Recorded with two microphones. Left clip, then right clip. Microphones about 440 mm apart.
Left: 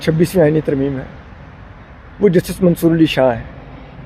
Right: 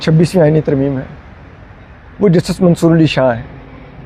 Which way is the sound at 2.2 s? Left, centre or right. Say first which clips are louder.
Right 1 dB; right.